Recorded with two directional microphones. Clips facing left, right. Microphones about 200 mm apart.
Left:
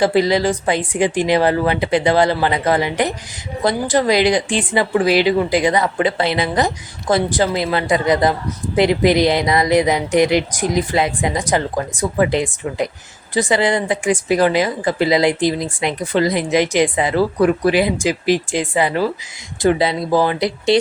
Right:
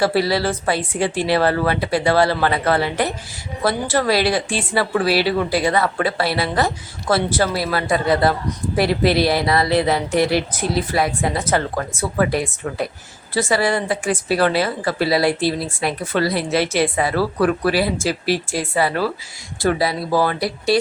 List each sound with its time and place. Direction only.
0.0 s speech: 15° left (ahead or behind)